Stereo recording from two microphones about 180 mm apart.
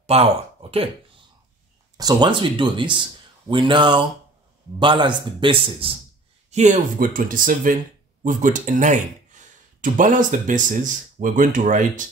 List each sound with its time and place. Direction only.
0.0 s speech: 35° right (ahead or behind)
2.0 s a man's voice: 25° right (ahead or behind)
6.5 s speech: 40° right (ahead or behind)